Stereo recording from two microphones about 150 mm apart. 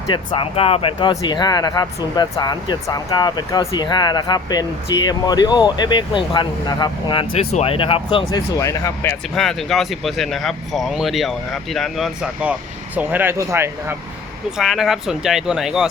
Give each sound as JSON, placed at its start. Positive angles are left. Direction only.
{"t": 0.1, "sound": "speech", "side_deg": 35}
{"t": 8.5, "sound": "speech", "side_deg": 20}
{"t": 9.3, "sound": "speech", "side_deg": 0}
{"t": 14.6, "sound": "speech", "side_deg": 0}